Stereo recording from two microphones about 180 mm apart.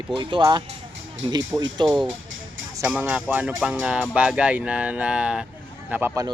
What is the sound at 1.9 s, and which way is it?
Speech, centre (ahead or behind).